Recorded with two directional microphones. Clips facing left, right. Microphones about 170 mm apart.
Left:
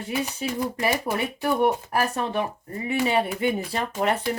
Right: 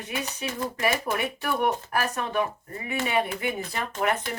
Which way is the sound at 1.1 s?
30° left (ahead or behind).